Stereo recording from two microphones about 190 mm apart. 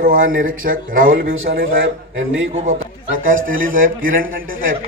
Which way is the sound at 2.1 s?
85° right.